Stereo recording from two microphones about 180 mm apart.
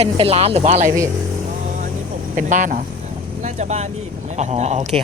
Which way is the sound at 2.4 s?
45° right (ahead or behind).